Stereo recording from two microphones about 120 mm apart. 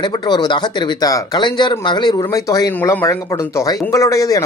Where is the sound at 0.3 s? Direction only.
35° left (ahead or behind).